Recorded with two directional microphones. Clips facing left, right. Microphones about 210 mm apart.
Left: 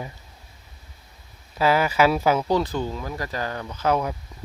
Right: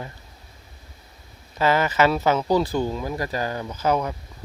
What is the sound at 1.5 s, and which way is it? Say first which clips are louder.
Speech: even; 10° left (ahead or behind).